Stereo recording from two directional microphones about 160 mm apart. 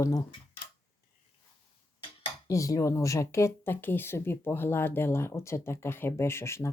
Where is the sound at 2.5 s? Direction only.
20° left (ahead or behind).